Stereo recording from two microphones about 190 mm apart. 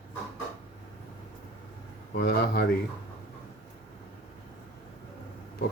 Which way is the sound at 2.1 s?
55° left (ahead or behind).